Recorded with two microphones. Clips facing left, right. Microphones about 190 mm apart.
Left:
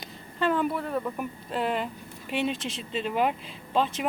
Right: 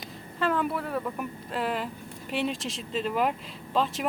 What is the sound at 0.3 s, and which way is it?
Speech, centre (ahead or behind).